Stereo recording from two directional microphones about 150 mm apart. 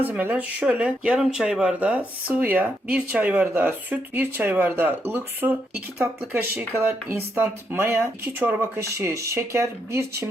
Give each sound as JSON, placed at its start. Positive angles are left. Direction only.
{"t": 0.0, "sound": "speech", "side_deg": -10}